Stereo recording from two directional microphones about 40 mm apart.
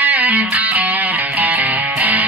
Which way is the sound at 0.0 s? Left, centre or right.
Right.